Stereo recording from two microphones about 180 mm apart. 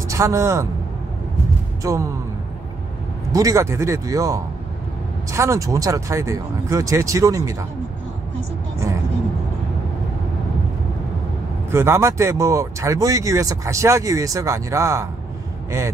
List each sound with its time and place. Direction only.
0.1 s a man's voice: 15° right (ahead or behind)
1.8 s speech: 15° right (ahead or behind)
3.3 s speech: 20° right (ahead or behind)
8.7 s vehicle: 15° right (ahead or behind)
11.7 s speech: 15° right (ahead or behind)